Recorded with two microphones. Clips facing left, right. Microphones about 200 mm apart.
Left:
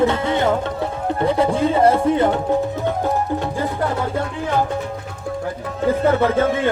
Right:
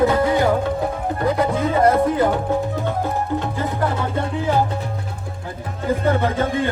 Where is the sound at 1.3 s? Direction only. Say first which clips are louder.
Left 2 dB; 30° left (ahead or behind).